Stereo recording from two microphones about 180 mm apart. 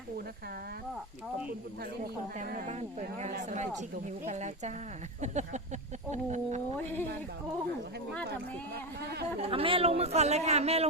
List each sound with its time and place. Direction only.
2.4 s a man's voice: 45° right (ahead or behind)
6.7 s speech: 10° left (ahead or behind)
8.7 s speech: 65° right (ahead or behind)
9.4 s a man's voice: 30° right (ahead or behind)